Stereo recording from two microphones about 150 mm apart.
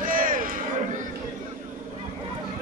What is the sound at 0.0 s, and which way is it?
Crowd, 65° right (ahead or behind).